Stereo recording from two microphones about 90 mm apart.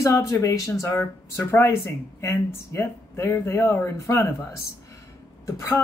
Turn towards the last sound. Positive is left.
turn(degrees=40)  # may be behind; listen again after turning